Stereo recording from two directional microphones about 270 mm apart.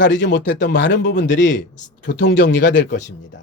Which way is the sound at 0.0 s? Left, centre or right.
Left.